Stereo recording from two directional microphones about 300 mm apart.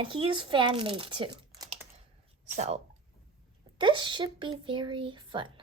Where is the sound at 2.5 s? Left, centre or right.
Right.